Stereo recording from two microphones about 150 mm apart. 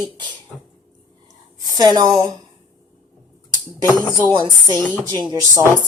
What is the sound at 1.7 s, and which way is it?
Speech, 25° right (ahead or behind).